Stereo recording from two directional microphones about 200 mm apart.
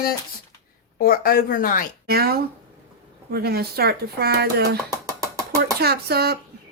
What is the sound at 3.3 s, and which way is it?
Speech, 50° right (ahead or behind).